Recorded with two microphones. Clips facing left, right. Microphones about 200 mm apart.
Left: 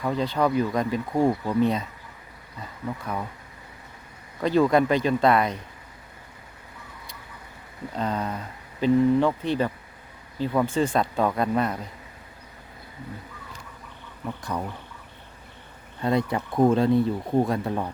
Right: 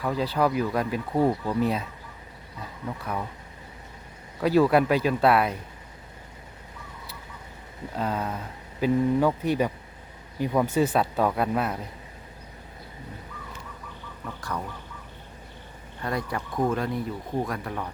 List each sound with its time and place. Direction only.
0.0 s speech: 5° right (ahead or behind)
4.4 s speech: 5° right (ahead or behind)
7.9 s speech: 5° right (ahead or behind)
16.0 s speech: 25° left (ahead or behind)